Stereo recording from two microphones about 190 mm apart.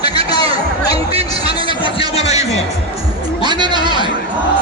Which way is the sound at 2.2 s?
35° left (ahead or behind).